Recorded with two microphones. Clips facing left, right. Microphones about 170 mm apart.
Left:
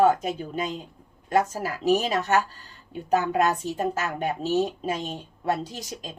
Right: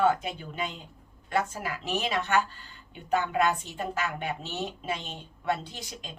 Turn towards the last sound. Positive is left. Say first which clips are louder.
# left 5 dB
turn(degrees=40)  # may be behind; listen again after turning